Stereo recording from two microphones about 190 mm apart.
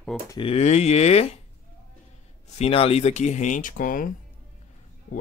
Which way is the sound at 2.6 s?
30° left (ahead or behind).